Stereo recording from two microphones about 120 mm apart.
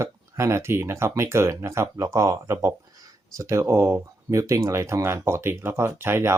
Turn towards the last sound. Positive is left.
turn(degrees=-20)  # may be behind; listen again after turning